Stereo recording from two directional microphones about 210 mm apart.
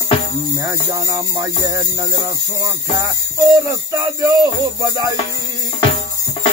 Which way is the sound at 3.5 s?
15° right (ahead or behind).